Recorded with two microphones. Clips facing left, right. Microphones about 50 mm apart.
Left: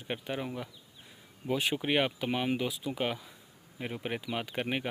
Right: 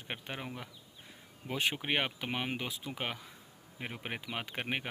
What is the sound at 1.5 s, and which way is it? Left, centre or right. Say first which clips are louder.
Speech: left 3 dB; right.